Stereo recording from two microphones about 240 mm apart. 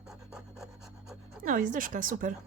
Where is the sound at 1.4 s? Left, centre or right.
Right.